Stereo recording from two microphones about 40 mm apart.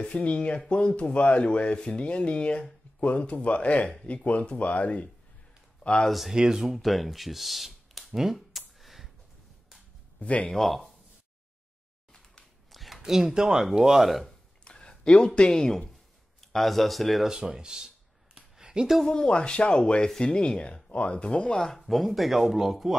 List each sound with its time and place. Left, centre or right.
0.0 s speech: left
6.0 s speech: centre
6.3 s speech: centre
6.7 s a sound: centre
10.2 s speech: left
10.5 s speech: centre
12.7 s a sound: centre
13.0 s speech: centre
14.6 s a sound: left
16.5 s speech: centre
17.3 s a sound: centre
19.0 s speech: left
21.7 s speech: centre